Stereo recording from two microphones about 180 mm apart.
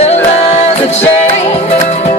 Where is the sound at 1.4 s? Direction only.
35° left (ahead or behind).